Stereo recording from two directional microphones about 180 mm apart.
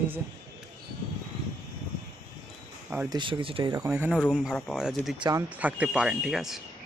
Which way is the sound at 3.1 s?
30° right (ahead or behind).